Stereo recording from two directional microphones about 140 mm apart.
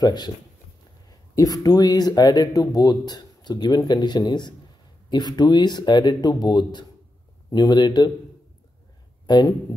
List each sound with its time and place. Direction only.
0.0 s speech: 30° left (ahead or behind)
1.3 s speech: 25° left (ahead or behind)
9.2 s speech: 30° left (ahead or behind)